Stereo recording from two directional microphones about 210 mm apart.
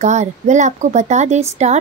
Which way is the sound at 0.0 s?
35° right (ahead or behind).